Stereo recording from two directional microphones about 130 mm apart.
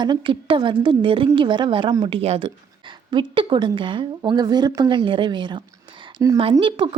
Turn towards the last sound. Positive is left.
turn(degrees=-40)  # may be behind; listen again after turning